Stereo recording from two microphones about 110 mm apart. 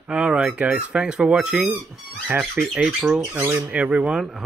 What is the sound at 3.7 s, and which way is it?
Speech, 10° right (ahead or behind).